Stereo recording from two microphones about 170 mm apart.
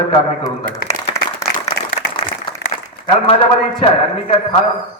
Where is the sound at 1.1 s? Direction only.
15° left (ahead or behind).